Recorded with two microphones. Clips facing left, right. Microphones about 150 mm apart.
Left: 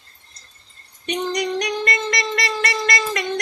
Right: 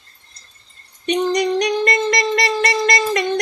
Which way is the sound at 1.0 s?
25° right (ahead or behind).